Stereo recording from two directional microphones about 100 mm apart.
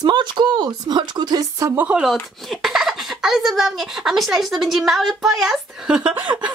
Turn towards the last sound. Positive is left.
turn(degrees=-10)  # may be behind; listen again after turning